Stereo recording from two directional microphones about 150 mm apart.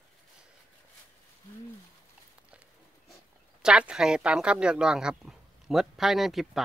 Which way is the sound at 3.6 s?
5° right (ahead or behind).